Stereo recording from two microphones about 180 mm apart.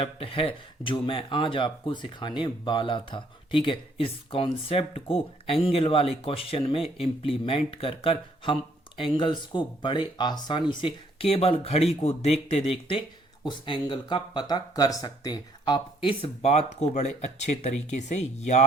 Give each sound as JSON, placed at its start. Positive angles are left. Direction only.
{"t": 0.0, "sound": "speech", "side_deg": 30}